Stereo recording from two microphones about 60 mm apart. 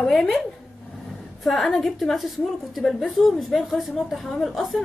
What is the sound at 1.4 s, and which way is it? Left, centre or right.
A woman's voice, centre.